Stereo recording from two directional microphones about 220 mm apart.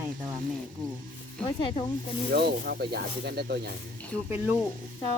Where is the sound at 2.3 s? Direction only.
50° right (ahead or behind).